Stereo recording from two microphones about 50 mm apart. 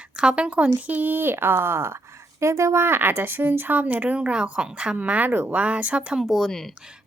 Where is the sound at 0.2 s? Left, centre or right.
Centre; by 2.0 s right.